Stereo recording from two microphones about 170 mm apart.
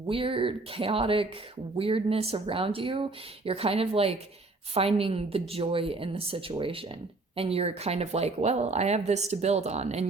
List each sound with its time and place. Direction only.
0.1 s speech: 30° right (ahead or behind)